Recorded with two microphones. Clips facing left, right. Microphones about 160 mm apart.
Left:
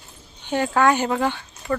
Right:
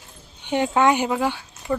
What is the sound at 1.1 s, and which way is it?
Speech, 10° right (ahead or behind).